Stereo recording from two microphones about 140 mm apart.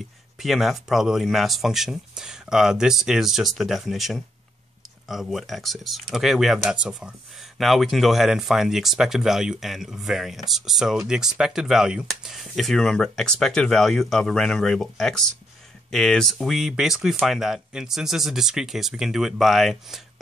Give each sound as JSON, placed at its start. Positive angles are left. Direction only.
{"t": 0.4, "sound": "speech", "side_deg": 0}